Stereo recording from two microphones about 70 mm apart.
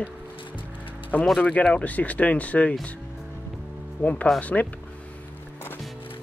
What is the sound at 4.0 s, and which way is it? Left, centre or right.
Speech, left.